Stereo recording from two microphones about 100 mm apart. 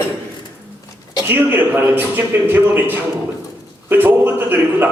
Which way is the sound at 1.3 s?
20° right (ahead or behind).